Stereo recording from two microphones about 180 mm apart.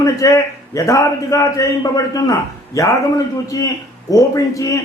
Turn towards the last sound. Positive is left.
turn(degrees=20)  # may be behind; listen again after turning